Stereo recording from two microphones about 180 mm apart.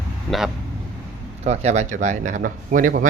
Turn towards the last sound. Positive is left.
turn(degrees=-45)  # may be behind; listen again after turning